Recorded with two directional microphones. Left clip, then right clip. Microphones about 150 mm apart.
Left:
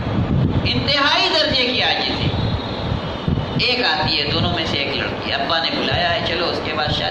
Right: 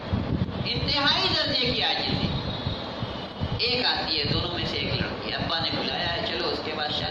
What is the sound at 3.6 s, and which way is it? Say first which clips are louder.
Speech: left 7 dB; 40° left (ahead or behind).